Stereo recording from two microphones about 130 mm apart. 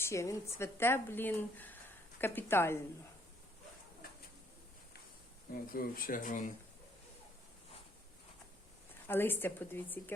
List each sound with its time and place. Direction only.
0.0 s a woman's voice: 20° left (ahead or behind)
5.7 s speech: 90° left
9.0 s a woman's voice: 15° left (ahead or behind)